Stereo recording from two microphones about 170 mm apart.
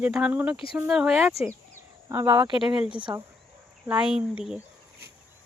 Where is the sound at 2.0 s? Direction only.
15° right (ahead or behind).